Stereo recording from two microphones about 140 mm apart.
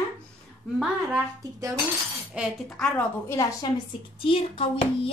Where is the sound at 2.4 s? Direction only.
10° right (ahead or behind).